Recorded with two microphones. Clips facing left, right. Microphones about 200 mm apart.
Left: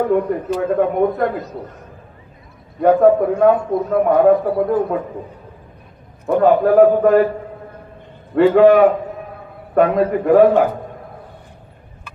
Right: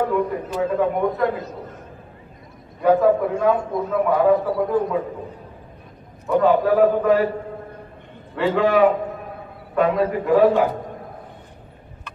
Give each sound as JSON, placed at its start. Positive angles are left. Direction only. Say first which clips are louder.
{"t": 0.1, "sound": "a man's voice", "louder": "left 5 dB", "side_deg": 55}
{"t": 2.8, "sound": "a man's voice", "louder": "left 4 dB", "side_deg": 55}
{"t": 6.2, "sound": "a man's voice", "louder": "left 4 dB", "side_deg": 55}
{"t": 8.4, "sound": "a man's voice", "louder": "left 7 dB", "side_deg": 55}